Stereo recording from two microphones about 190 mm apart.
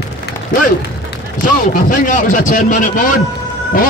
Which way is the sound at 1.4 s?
45° left (ahead or behind).